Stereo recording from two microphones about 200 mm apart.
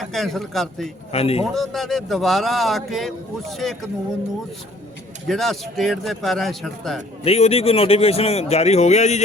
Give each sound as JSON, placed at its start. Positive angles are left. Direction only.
{"t": 0.0, "sound": "a man's voice", "side_deg": 0}
{"t": 1.1, "sound": "speech", "side_deg": 30}
{"t": 1.5, "sound": "a man's voice", "side_deg": 0}
{"t": 5.3, "sound": "a man's voice", "side_deg": 0}
{"t": 7.3, "sound": "speech", "side_deg": 30}